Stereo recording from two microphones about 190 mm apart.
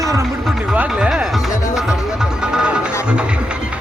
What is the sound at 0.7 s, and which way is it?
Music, 5° right (ahead or behind).